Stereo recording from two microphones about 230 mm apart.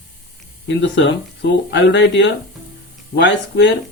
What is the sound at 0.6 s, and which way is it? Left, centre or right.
Speech, left.